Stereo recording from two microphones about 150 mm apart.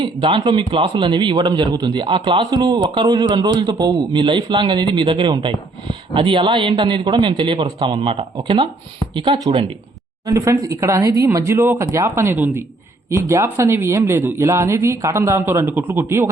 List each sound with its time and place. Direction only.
0.0 s a man's voice: 35° right (ahead or behind)
10.2 s speech: 20° right (ahead or behind)